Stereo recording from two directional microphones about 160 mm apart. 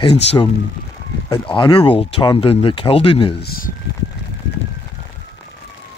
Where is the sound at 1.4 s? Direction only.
30° left (ahead or behind).